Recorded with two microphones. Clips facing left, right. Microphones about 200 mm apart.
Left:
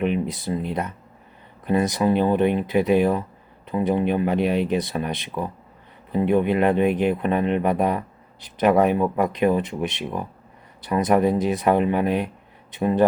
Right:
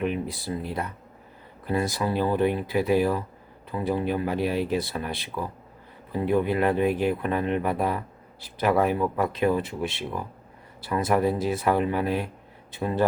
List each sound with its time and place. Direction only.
0.0 s speech: 20° left (ahead or behind)